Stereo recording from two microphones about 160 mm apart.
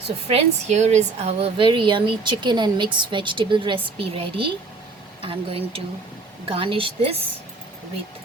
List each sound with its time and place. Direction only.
0.3 s a woman's voice: 45° right (ahead or behind)